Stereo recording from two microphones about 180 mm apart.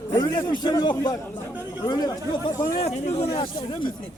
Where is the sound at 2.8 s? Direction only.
35° left (ahead or behind).